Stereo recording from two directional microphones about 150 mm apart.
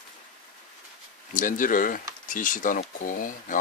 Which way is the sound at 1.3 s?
60° left (ahead or behind).